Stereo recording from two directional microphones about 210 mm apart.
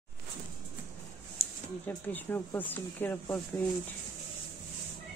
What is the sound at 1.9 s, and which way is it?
Speech, 10° left (ahead or behind).